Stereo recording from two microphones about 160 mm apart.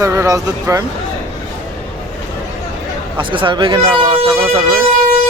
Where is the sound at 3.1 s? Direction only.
30° right (ahead or behind).